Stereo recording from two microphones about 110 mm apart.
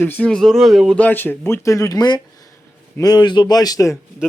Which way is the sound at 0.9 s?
15° left (ahead or behind).